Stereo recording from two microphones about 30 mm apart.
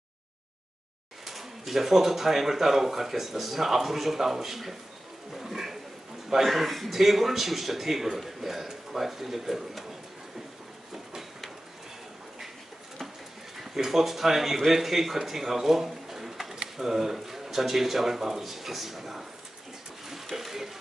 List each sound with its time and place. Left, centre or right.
1.2 s speech: centre
6.4 s speech: centre
13.7 s speech: centre
15.2 s pigeon: centre
16.7 s speech: centre
20.3 s a sound: centre